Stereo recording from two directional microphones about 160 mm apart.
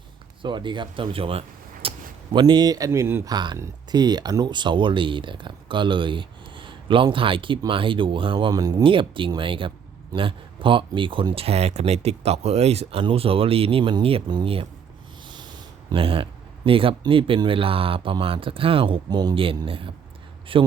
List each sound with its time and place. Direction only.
0.4 s speech: 30° right (ahead or behind)